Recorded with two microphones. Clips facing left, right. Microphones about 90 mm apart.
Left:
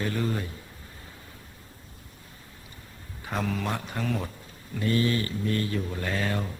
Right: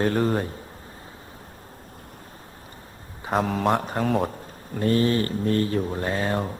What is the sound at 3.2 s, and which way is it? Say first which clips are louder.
Speech: right 7 dB; 40° right (ahead or behind).